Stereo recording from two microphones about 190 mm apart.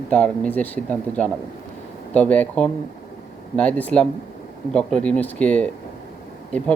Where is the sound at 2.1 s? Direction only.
5° left (ahead or behind).